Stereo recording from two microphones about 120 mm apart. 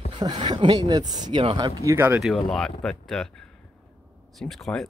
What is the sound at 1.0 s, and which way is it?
Speech, 90° right.